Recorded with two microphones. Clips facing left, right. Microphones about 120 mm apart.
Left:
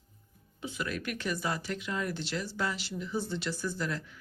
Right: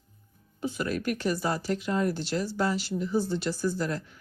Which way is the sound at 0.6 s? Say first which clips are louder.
Right 6 dB; 40° right (ahead or behind).